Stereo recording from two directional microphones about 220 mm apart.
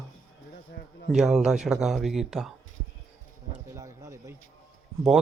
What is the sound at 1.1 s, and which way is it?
A man's voice, centre (ahead or behind).